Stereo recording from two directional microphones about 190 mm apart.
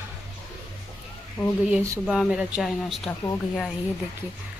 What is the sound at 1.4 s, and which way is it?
Speech, 10° left (ahead or behind).